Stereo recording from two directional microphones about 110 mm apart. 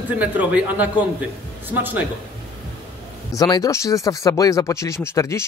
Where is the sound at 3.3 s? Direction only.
30° left (ahead or behind).